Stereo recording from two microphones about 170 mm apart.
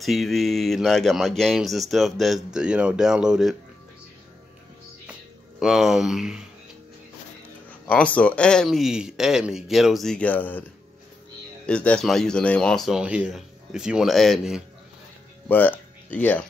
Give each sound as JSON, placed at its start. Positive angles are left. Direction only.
{"t": 0.0, "sound": "speech", "side_deg": 0}
{"t": 5.6, "sound": "speech", "side_deg": -5}
{"t": 7.8, "sound": "speech", "side_deg": 10}
{"t": 11.6, "sound": "speech", "side_deg": 5}
{"t": 15.4, "sound": "music", "side_deg": 10}